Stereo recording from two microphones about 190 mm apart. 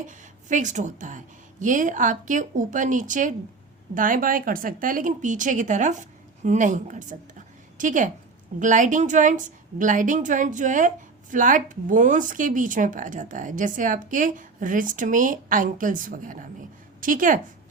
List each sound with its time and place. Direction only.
0.0 s a woman's voice: 40° right (ahead or behind)